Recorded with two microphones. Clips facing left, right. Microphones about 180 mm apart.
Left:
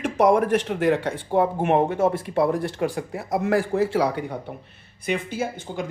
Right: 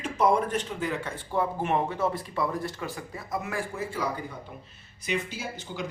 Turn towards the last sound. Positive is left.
turn(degrees=50)  # may be behind; listen again after turning